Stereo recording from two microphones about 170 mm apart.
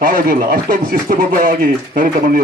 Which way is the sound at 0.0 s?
55° right (ahead or behind).